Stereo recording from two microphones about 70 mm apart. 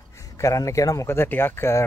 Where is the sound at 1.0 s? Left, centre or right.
Left.